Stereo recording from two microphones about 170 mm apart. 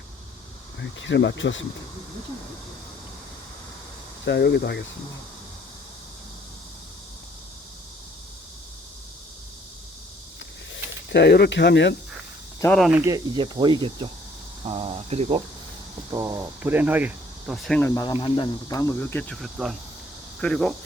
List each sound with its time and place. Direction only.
0.8 s speech: 90° left
4.3 s speech: 85° left
11.1 s speech: 75° left (ahead or behind)
12.9 s speech: 15° right (ahead or behind); by 15.4 s 40° right (ahead or behind)
16.1 s speech: 20° right (ahead or behind); by 17.8 s 5° left (ahead or behind)
17.8 s speech: 20° left (ahead or behind); by 20.7 s 5° left (ahead or behind)